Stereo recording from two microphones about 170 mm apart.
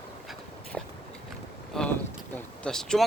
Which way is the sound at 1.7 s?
10° left (ahead or behind).